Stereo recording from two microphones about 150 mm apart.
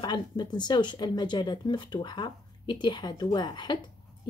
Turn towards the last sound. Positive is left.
turn(degrees=30)  # may be behind; listen again after turning